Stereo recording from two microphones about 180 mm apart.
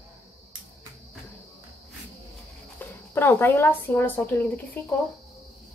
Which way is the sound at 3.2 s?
10° left (ahead or behind).